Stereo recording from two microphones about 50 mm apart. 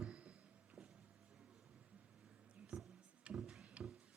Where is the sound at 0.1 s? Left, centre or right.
Right.